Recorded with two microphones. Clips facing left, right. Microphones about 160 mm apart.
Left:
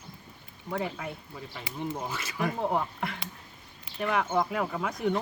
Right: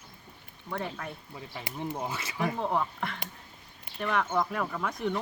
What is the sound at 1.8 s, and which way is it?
Speech, 25° right (ahead or behind).